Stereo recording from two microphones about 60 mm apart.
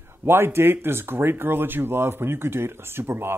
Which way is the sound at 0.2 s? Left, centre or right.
Right.